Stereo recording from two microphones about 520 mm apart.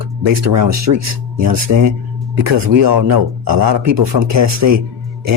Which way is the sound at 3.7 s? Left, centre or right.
Right.